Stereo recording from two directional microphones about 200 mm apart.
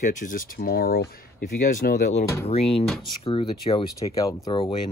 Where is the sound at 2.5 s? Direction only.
30° left (ahead or behind).